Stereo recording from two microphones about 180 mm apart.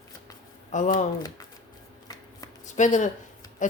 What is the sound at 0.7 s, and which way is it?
Speech, 45° left (ahead or behind).